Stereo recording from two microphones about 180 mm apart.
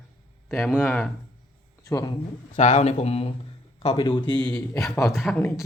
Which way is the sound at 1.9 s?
25° left (ahead or behind).